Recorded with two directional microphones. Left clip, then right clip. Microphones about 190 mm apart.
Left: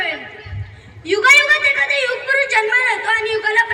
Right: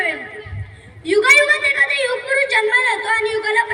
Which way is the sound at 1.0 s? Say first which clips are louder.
Left 1 dB; 40° right (ahead or behind).